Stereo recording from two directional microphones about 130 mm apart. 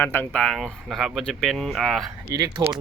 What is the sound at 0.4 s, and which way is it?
Speech, centre (ahead or behind).